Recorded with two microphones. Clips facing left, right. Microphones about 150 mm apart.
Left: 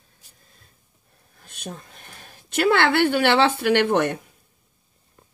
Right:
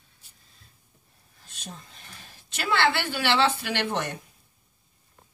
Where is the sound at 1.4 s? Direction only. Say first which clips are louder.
Left 7 dB; 55° left (ahead or behind).